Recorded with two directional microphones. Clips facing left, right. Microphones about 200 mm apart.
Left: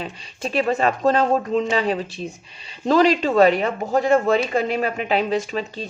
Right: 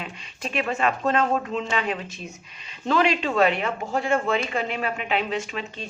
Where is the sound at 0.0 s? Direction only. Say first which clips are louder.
Left 5 dB; 35° left (ahead or behind).